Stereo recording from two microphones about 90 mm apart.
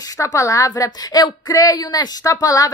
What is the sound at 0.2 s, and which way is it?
A woman's voice, 40° left (ahead or behind).